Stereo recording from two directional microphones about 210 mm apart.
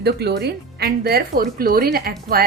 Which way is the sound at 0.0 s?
50° right (ahead or behind).